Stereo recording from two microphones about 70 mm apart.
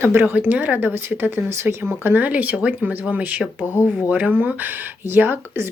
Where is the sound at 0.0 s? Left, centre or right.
Right.